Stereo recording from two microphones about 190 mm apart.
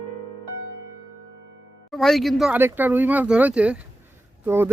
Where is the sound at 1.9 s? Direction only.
Centre (ahead or behind).